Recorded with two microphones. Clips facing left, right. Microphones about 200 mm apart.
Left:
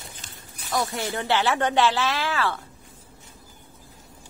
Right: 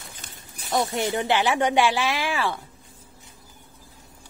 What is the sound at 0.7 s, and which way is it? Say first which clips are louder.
Speech: right 3 dB; 20° right (ahead or behind).